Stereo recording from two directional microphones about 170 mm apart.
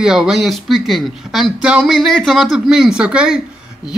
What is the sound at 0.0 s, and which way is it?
Speech, 5° right (ahead or behind).